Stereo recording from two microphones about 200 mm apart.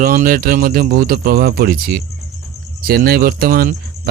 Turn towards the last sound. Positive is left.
turn(degrees=-45)  # may be behind; listen again after turning